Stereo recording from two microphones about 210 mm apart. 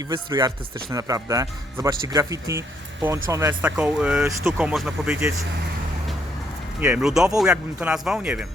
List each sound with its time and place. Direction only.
0.1 s speech: 20° right (ahead or behind); by 5.3 s 5° right (ahead or behind)
6.7 s speech: 10° right (ahead or behind)